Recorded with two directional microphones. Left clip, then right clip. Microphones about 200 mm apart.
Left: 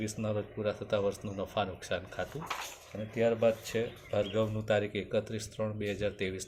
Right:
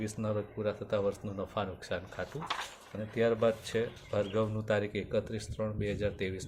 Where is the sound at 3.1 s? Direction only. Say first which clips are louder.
Left 1 dB; 25° right (ahead or behind).